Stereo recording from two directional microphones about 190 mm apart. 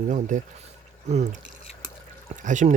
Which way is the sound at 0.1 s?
40° right (ahead or behind).